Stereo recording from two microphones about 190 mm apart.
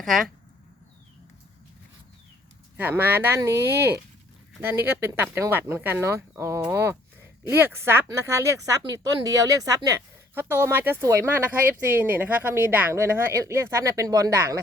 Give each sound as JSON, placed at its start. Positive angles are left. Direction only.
{"t": 2.7, "sound": "speech", "side_deg": -10}